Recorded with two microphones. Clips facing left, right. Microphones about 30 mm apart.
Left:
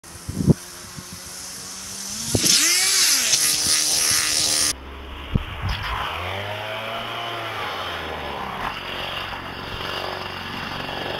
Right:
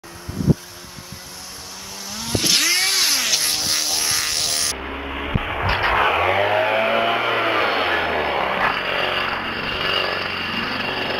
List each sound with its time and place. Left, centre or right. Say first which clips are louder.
2.1 s vehicle: right 1 dB; centre
5.6 s vehicle: right 13 dB; right